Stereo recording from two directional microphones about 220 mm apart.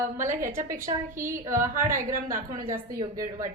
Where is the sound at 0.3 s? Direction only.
40° right (ahead or behind).